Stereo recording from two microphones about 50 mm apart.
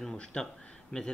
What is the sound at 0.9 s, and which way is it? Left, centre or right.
Speech, left.